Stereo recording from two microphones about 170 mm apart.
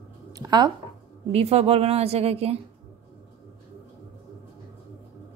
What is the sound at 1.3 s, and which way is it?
A woman's voice, 40° right (ahead or behind).